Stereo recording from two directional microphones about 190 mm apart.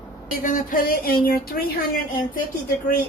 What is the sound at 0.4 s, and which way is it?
A woman's voice, 45° left (ahead or behind).